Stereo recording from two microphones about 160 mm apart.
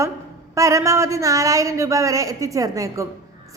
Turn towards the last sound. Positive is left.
turn(degrees=-20)  # may be behind; listen again after turning